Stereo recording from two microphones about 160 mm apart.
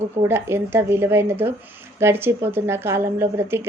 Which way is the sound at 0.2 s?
15° right (ahead or behind).